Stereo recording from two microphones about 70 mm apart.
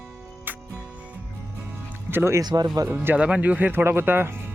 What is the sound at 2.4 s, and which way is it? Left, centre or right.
Speech, right.